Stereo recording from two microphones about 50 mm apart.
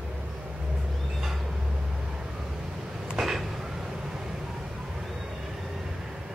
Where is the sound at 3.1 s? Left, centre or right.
Centre.